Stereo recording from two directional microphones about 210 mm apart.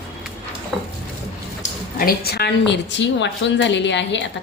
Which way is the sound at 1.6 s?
45° left (ahead or behind).